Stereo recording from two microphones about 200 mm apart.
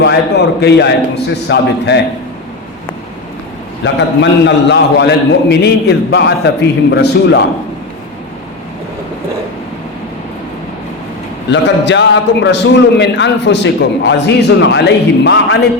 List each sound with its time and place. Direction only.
0.0 s a man's voice: 55° left (ahead or behind)
3.8 s a man's voice: 60° left (ahead or behind)
11.5 s a man's voice: 65° left (ahead or behind)